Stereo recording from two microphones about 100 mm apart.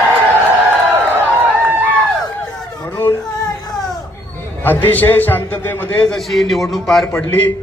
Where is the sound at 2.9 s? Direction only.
20° left (ahead or behind).